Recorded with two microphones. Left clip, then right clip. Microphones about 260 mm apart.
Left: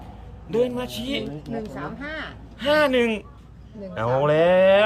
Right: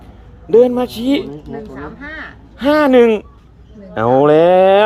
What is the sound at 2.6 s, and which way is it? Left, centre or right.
Speech, centre.